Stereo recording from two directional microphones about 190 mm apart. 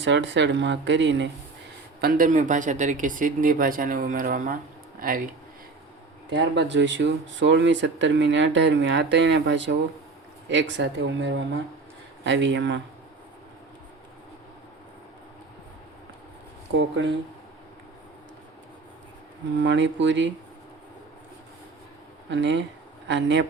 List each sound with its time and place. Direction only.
0.0 s speech: 70° right (ahead or behind)
2.0 s speech: 50° right (ahead or behind)
6.3 s speech: 70° right (ahead or behind)
19.5 s speech: 70° right (ahead or behind)
22.3 s speech: 70° right (ahead or behind)